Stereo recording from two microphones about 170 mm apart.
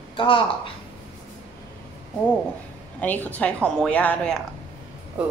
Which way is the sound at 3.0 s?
10° left (ahead or behind).